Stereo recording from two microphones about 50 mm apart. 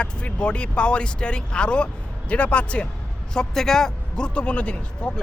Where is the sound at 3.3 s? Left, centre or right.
Centre.